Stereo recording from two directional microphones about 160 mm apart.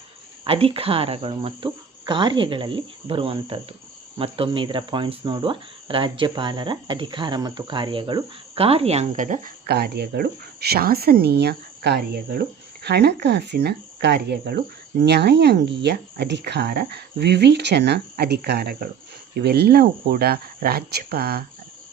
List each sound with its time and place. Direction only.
0.4 s speech: 35° right (ahead or behind)
9.6 s speech: 80° right
19.3 s speech: 90° right; by 21.4 s 75° right (ahead or behind)